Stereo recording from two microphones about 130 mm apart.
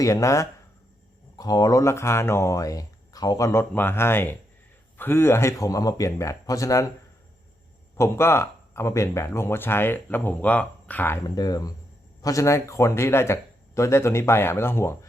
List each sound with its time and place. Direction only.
0.0 s speech: 25° left (ahead or behind)
7.9 s speech: 20° left (ahead or behind)
11.3 s speech: 30° left (ahead or behind)